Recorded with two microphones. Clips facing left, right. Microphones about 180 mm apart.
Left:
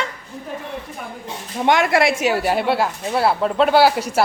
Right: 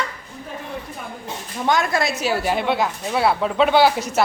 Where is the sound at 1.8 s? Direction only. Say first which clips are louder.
Left 5 dB; 70° left (ahead or behind).